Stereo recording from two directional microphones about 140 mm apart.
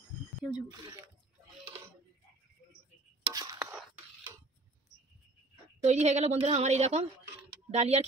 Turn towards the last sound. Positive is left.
turn(degrees=-50)  # may be behind; listen again after turning